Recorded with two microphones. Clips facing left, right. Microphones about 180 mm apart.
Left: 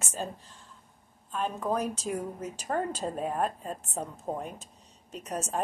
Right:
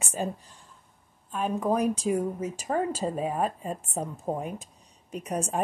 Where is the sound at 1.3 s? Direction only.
10° right (ahead or behind).